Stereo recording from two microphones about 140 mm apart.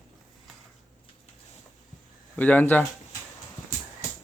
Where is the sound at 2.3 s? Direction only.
10° left (ahead or behind).